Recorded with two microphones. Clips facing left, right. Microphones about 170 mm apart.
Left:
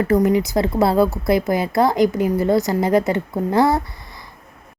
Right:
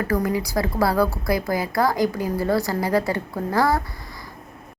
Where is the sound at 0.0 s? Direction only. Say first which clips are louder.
Left 6 dB; 20° left (ahead or behind).